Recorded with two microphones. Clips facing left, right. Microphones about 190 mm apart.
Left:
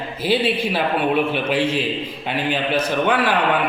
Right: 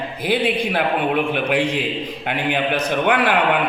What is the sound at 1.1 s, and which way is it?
Speech, 15° right (ahead or behind).